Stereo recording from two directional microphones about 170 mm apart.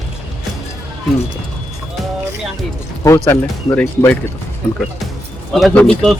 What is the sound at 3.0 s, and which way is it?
Speech, 15° left (ahead or behind).